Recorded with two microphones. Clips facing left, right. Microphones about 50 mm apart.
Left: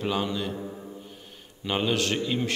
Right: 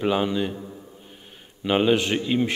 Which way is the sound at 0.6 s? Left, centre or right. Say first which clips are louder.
Left 2 dB; centre.